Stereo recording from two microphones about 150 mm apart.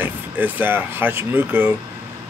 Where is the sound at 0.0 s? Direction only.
10° right (ahead or behind).